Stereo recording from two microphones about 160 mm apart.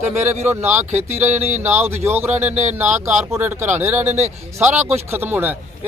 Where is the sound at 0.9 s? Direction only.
45° right (ahead or behind).